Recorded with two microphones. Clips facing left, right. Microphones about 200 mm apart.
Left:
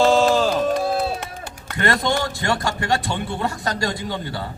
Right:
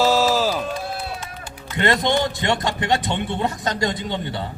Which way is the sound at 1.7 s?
20° right (ahead or behind).